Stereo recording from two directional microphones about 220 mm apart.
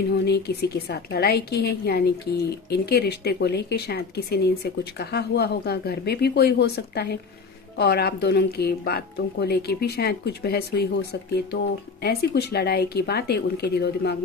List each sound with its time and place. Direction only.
0.1 s speech: 50° left (ahead or behind)